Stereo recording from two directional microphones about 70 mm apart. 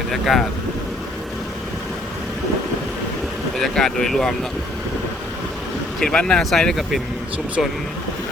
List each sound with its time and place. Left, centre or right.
0.1 s speech: centre
3.6 s speech: centre
6.0 s speech: centre